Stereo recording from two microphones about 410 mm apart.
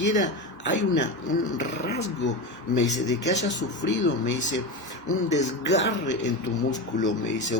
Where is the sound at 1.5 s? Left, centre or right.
Left.